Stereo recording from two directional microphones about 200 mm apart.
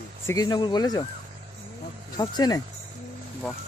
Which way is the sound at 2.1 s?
20° left (ahead or behind).